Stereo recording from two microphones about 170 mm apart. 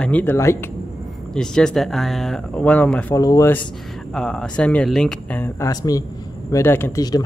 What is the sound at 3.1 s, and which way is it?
Speech, 20° left (ahead or behind).